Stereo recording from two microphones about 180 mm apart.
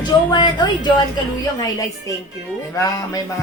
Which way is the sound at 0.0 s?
25° left (ahead or behind).